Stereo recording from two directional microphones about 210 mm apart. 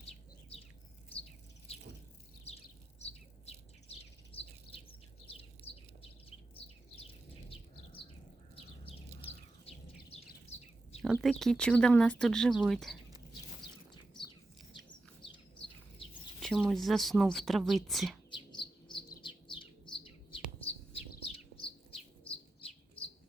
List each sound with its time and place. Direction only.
3.5 s bird: 30° left (ahead or behind)
6.6 s a sound: 30° left (ahead or behind)
8.5 s bird: 25° left (ahead or behind)
11.0 s speech: centre (ahead or behind)
14.8 s chirp: 25° left (ahead or behind)
16.4 s speech: centre (ahead or behind)
18.3 s bird: 20° left (ahead or behind)